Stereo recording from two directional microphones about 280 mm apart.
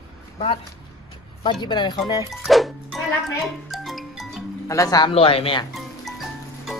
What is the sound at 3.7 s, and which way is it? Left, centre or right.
Music, centre.